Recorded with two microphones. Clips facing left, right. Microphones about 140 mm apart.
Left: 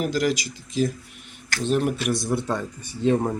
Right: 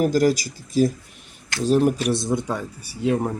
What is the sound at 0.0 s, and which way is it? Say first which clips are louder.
Speech: right 5 dB; 40° right (ahead or behind).